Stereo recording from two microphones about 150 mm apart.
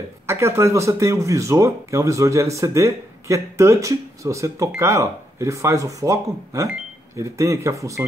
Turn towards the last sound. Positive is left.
turn(degrees=-20)  # may be behind; listen again after turning